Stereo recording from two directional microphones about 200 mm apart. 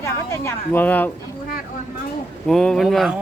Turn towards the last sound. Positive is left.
turn(degrees=0)  # may be behind; listen again after turning